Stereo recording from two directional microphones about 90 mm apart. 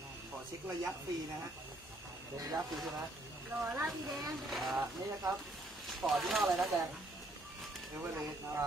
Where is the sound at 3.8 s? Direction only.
Centre (ahead or behind).